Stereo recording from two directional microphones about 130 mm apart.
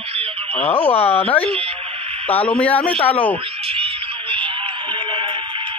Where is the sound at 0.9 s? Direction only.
50° left (ahead or behind).